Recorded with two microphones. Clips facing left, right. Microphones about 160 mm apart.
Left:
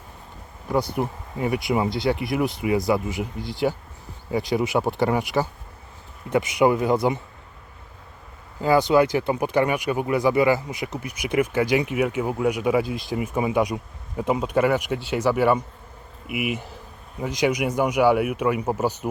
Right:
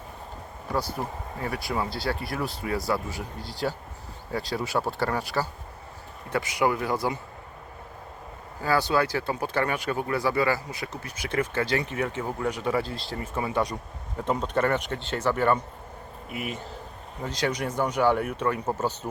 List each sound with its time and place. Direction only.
0.9 s speech: 15° left (ahead or behind)
8.6 s speech: 20° left (ahead or behind)